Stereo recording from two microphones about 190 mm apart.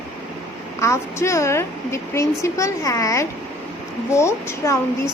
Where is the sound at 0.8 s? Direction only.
15° left (ahead or behind).